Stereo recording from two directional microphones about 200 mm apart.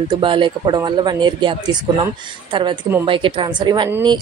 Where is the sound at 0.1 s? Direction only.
25° right (ahead or behind).